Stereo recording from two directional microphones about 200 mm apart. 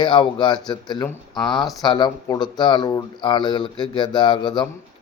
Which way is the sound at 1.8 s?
20° left (ahead or behind).